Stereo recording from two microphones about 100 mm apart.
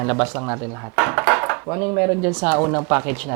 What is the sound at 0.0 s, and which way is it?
Speech, 10° right (ahead or behind).